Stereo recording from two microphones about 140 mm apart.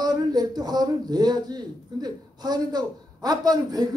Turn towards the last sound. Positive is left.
turn(degrees=-30)  # may be behind; listen again after turning